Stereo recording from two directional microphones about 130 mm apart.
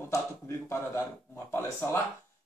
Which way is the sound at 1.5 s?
15° left (ahead or behind).